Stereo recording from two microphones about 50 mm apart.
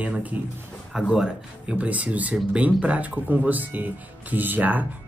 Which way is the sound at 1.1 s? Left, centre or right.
Centre.